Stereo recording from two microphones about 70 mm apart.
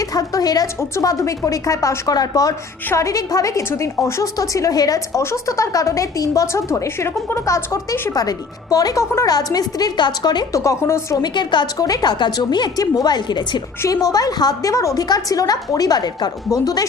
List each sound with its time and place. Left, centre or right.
0.0 s a woman's voice: left
1.0 s speech: left
5.2 s speech: left
8.1 s a woman's voice: left
10.5 s speech: left
11.2 s a woman's voice: left
13.8 s a woman's voice: left
15.0 s a woman's voice: left